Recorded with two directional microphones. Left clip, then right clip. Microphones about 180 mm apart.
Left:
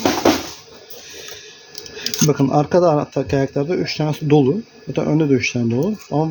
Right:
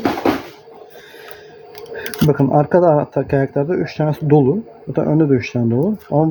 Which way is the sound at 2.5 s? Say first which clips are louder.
Right 3 dB; 15° right (ahead or behind).